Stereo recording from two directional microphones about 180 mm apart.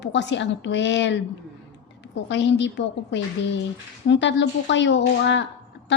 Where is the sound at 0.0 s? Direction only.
75° left (ahead or behind).